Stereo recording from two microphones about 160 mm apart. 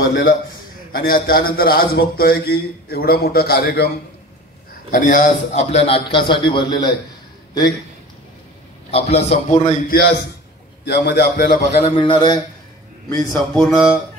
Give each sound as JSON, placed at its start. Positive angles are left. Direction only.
{"t": 0.9, "sound": "a man's voice", "side_deg": 65}
{"t": 4.9, "sound": "a man's voice", "side_deg": 55}
{"t": 8.9, "sound": "a man's voice", "side_deg": 40}
{"t": 9.9, "sound": "a man's voice", "side_deg": 90}
{"t": 11.8, "sound": "a man's voice", "side_deg": 35}
{"t": 13.1, "sound": "a man's voice", "side_deg": 20}